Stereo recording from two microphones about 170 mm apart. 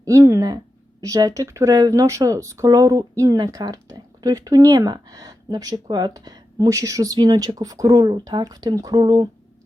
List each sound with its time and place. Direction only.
0.0 s speech: 20° right (ahead or behind)